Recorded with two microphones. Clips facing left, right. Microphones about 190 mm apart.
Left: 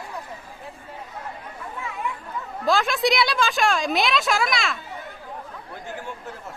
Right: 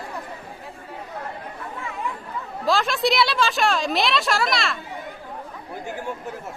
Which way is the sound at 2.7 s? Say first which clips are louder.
Even; centre (ahead or behind).